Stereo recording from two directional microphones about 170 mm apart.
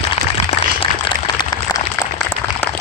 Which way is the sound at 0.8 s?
30° left (ahead or behind).